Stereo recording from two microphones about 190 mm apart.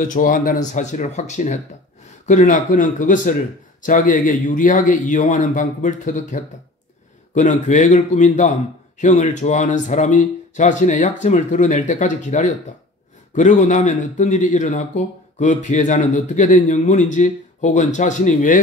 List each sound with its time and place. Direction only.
0.0 s speech: 45° left (ahead or behind)